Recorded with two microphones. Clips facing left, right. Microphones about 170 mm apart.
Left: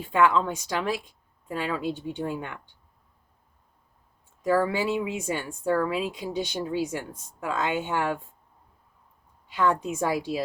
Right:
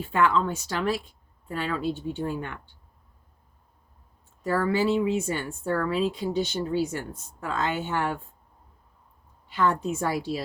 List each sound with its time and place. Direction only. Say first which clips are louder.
0.0 s speech: left 1 dB; 15° left (ahead or behind)
4.5 s speech: right 1 dB; 15° left (ahead or behind)
9.6 s speech: even; 15° left (ahead or behind)